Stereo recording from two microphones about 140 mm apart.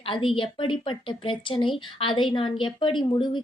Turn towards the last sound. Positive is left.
turn(degrees=35)  # may be behind; listen again after turning